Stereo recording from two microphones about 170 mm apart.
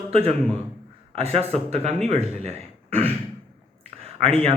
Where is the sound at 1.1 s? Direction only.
35° right (ahead or behind).